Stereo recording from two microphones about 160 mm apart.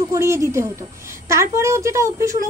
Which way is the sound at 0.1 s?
15° right (ahead or behind).